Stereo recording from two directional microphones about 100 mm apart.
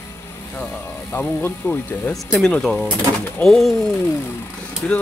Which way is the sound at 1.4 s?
20° left (ahead or behind).